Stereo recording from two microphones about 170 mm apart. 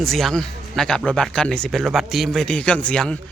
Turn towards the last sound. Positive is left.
turn(degrees=5)  # may be behind; listen again after turning